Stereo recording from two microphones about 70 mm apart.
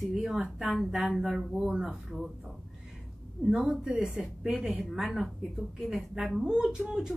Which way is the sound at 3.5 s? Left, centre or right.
Centre.